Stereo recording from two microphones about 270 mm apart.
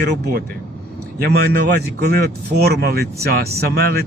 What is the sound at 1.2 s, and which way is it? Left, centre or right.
Speech, right.